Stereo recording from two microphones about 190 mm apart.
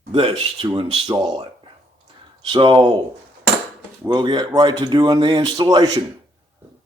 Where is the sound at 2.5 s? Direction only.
25° right (ahead or behind).